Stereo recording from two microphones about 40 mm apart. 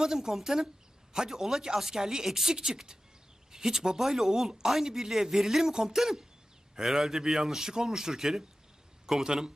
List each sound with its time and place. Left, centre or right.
0.0 s a man's voice: centre